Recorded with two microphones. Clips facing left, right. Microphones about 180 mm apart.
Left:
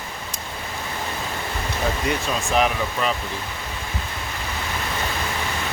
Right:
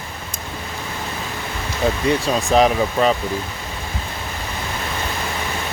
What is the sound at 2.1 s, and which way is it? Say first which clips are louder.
Speech: right 6 dB; 35° right (ahead or behind).